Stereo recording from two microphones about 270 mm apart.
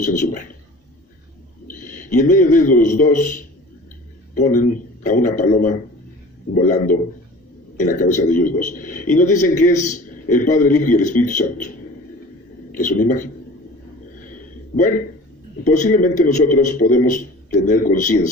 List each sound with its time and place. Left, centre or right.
0.0 s a man's voice: left
1.6 s a sound: left
2.1 s a man's voice: left
12.7 s a man's voice: left
14.8 s a man's voice: left